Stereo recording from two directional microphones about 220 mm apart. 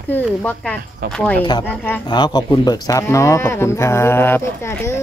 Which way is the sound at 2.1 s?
20° left (ahead or behind).